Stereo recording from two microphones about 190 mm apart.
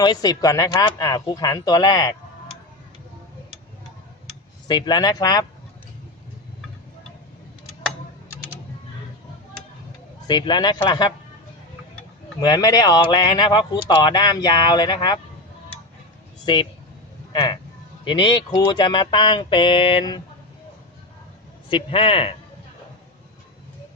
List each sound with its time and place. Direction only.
0.0 s speech: 20° left (ahead or behind)
4.7 s speech: 20° left (ahead or behind)
10.2 s speech: 25° left (ahead or behind)
12.4 s speech: 20° left (ahead or behind)
16.5 s speech: 25° left (ahead or behind)
18.0 s speech: 25° left (ahead or behind)
21.7 s speech: 25° left (ahead or behind)